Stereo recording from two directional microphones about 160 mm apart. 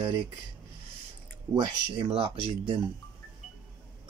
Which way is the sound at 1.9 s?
35° right (ahead or behind).